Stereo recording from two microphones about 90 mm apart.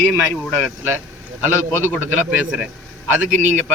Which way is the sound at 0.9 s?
25° right (ahead or behind).